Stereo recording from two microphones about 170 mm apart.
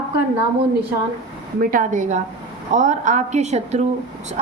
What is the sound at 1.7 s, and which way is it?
A woman's voice, 50° right (ahead or behind).